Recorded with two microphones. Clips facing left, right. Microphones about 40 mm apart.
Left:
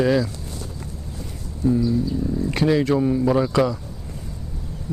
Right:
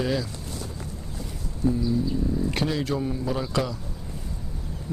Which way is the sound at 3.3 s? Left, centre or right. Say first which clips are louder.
Left 8 dB; centre.